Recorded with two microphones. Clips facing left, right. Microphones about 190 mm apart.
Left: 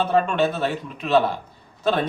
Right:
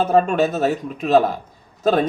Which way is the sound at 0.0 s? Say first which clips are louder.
Right 3 dB; 40° right (ahead or behind).